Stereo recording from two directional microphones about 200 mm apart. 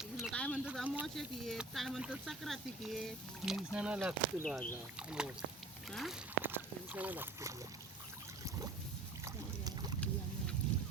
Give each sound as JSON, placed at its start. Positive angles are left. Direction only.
{"t": 0.2, "sound": "a sound", "side_deg": 5}
{"t": 0.6, "sound": "speech", "side_deg": -5}
{"t": 9.2, "sound": "boat", "side_deg": -20}